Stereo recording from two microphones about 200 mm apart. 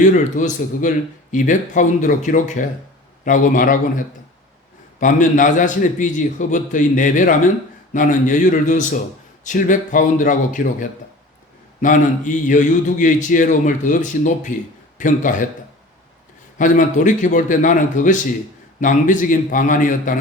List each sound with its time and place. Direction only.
0.0 s speech: 40° left (ahead or behind)
16.6 s speech: 40° left (ahead or behind)